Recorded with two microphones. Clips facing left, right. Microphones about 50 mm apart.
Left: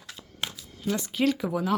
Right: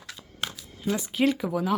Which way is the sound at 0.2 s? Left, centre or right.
Centre.